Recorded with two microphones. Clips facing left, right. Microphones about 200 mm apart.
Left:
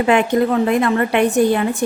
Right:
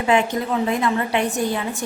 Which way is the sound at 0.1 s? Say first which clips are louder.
Left 3 dB; 60° left (ahead or behind).